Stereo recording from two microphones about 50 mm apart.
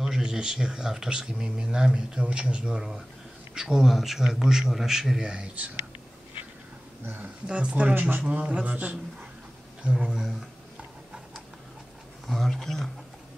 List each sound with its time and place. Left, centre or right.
0.0 s speech: centre
3.5 s speech: centre
5.3 s speech: right
7.4 s speech: right
7.9 s a man's voice: right
8.2 s speech: right
9.8 s speech: centre
12.3 s speech: centre